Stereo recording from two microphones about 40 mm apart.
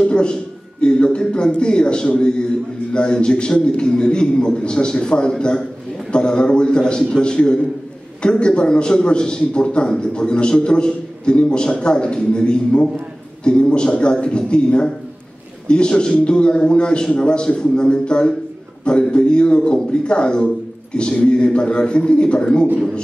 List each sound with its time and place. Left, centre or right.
0.0 s a man's voice: left